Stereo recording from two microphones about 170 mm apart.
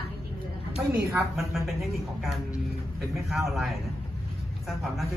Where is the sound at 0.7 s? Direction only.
15° right (ahead or behind).